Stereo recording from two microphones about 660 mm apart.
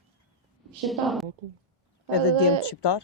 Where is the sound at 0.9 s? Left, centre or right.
Centre.